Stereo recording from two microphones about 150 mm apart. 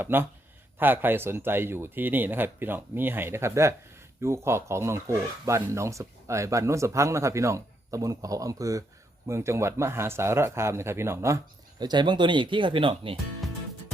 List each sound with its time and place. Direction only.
0.0 s speech: 15° right (ahead or behind); by 13.1 s 35° right (ahead or behind)